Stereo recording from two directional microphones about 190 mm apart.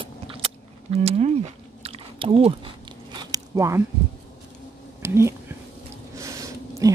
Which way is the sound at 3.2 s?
15° right (ahead or behind).